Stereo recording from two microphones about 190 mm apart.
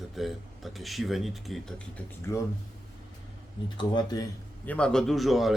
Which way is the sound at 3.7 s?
20° left (ahead or behind).